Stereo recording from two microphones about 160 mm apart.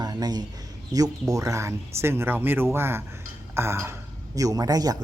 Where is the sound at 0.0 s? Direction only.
25° right (ahead or behind).